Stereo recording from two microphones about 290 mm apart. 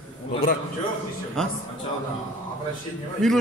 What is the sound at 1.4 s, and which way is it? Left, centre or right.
Speech, centre.